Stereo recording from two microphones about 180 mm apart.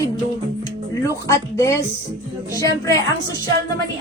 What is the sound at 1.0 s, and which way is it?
A woman's voice, 15° left (ahead or behind).